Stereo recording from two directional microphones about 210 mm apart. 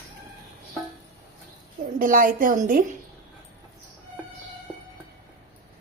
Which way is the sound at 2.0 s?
40° right (ahead or behind).